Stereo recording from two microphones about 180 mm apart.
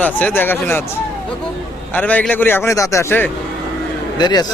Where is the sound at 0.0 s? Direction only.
10° left (ahead or behind).